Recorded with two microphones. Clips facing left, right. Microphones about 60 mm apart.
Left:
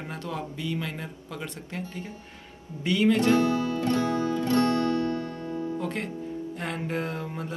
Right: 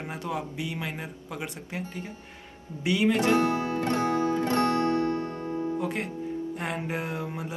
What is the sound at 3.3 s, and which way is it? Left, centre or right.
Music, right.